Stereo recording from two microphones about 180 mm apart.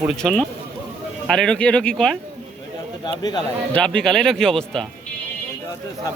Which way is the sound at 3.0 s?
25° left (ahead or behind).